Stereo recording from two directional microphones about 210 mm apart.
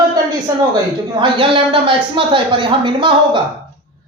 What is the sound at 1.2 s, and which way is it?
Speech, 25° right (ahead or behind).